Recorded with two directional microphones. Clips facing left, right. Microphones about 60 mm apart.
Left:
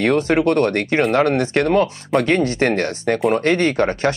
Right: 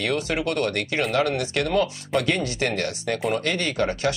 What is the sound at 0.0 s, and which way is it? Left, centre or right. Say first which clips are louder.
Speech: left 9 dB; left.